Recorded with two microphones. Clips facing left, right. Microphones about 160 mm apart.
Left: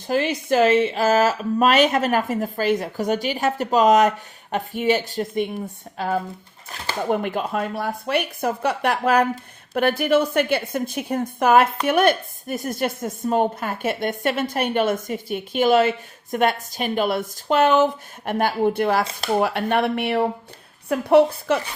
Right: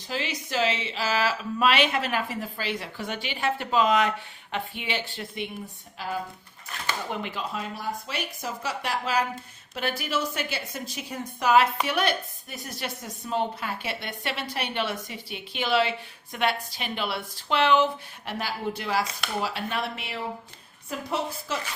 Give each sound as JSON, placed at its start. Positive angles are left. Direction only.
{"t": 0.1, "sound": "speech", "side_deg": 55}
{"t": 6.0, "sound": "speech", "side_deg": 55}